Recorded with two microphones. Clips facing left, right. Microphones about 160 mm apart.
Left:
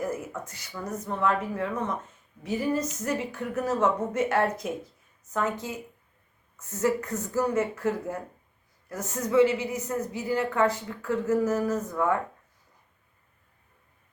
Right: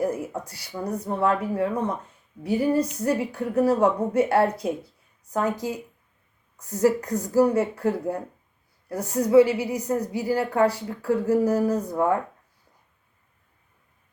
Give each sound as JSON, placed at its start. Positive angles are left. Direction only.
{"t": 0.3, "sound": "speech", "side_deg": -35}